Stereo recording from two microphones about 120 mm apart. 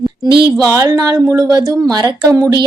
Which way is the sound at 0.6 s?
30° right (ahead or behind).